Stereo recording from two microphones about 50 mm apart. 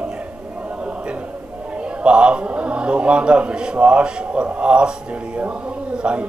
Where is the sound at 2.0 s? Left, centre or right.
Right.